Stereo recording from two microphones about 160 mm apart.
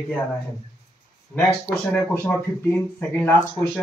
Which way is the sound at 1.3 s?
10° left (ahead or behind).